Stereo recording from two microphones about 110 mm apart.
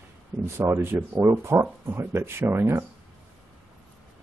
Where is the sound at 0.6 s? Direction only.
20° right (ahead or behind).